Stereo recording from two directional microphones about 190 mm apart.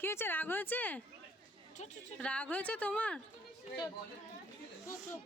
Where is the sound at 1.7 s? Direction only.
40° left (ahead or behind).